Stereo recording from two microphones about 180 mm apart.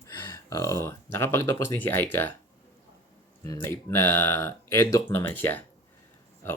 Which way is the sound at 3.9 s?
15° left (ahead or behind).